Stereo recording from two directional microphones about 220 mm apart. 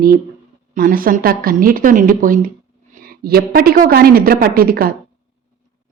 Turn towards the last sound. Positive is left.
turn(degrees=-40)  # may be behind; listen again after turning